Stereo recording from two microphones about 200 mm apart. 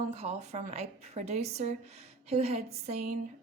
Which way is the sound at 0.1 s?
35° right (ahead or behind).